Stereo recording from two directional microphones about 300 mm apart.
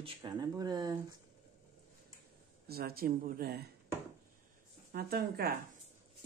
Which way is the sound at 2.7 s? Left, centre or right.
Right.